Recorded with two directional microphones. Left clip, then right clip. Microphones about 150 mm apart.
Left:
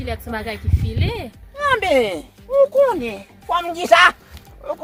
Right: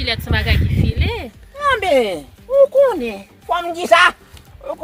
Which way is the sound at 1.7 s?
60° right (ahead or behind).